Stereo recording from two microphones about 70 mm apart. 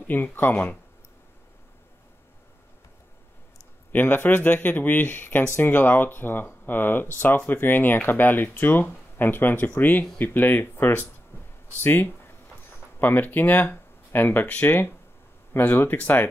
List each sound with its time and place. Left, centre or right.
0.0 s speech: left
3.9 s speech: left
11.3 s a sound: left
11.7 s speech: left